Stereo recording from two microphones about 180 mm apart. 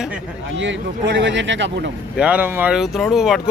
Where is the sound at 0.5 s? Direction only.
90° right.